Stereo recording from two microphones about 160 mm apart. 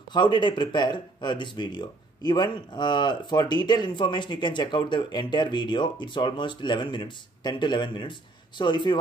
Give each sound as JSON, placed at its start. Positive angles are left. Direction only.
{"t": 0.1, "sound": "speech", "side_deg": 30}